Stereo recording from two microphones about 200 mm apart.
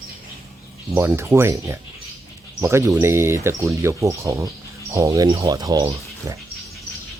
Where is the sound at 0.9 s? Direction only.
15° right (ahead or behind).